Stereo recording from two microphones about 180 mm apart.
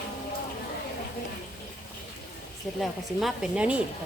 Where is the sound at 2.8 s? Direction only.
Centre (ahead or behind).